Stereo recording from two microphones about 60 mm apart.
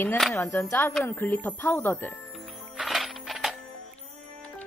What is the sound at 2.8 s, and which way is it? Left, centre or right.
Music, centre.